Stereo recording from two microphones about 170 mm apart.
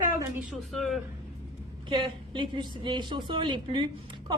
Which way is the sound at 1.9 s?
30° right (ahead or behind).